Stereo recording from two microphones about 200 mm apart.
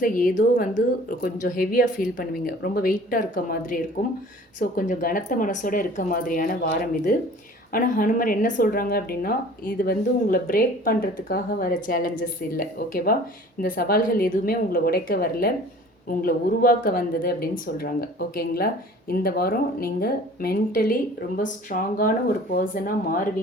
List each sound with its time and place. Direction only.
0.0 s speech: 45° left (ahead or behind)
4.8 s speech: 40° left (ahead or behind)